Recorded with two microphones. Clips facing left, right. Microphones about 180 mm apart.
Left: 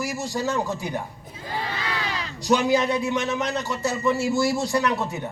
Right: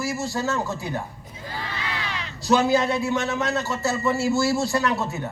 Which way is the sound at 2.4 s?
15° left (ahead or behind).